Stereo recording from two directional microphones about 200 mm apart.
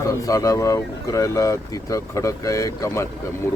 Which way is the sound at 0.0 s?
15° left (ahead or behind).